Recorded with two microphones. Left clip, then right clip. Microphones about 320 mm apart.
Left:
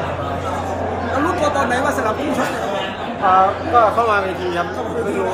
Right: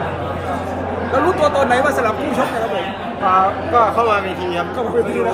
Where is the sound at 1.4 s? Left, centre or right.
Right.